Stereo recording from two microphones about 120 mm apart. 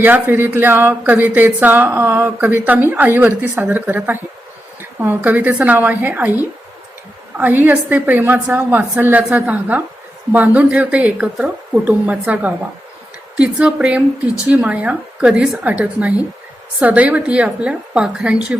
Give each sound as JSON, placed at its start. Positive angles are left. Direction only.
{"t": 0.0, "sound": "speech", "side_deg": -15}